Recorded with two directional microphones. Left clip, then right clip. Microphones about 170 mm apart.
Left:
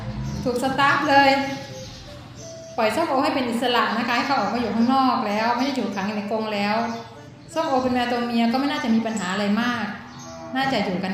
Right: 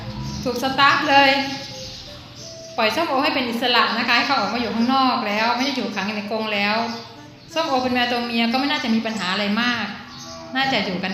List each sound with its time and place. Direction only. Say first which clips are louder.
0.4 s a woman's voice: right 3 dB; 5° right (ahead or behind)
2.7 s a woman's voice: right 1 dB; 5° right (ahead or behind)